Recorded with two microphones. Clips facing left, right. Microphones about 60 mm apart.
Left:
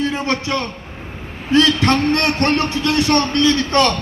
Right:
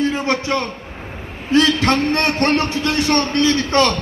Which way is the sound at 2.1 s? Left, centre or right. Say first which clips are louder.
Even; right.